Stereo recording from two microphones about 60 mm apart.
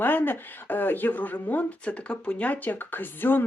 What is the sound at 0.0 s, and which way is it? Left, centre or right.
Speech, left.